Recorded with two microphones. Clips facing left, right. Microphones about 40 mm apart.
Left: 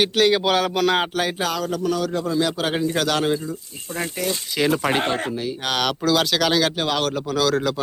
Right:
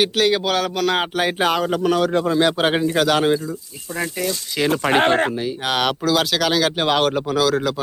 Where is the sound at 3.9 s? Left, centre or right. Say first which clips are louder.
Right 2 dB; right.